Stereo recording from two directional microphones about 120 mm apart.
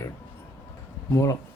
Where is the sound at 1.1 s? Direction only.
25° left (ahead or behind).